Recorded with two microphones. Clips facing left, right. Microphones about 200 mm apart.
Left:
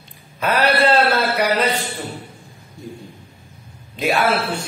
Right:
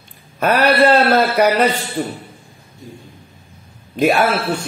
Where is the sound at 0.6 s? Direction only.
45° right (ahead or behind).